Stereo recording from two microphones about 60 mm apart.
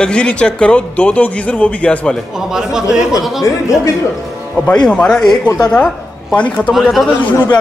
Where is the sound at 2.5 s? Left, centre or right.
Centre.